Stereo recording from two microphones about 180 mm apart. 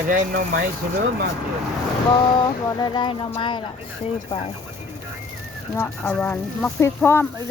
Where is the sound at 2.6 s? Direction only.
20° left (ahead or behind).